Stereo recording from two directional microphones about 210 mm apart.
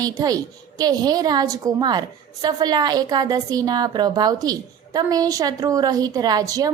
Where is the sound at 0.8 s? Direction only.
20° right (ahead or behind).